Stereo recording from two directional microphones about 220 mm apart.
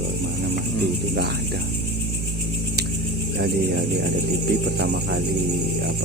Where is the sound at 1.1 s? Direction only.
50° right (ahead or behind).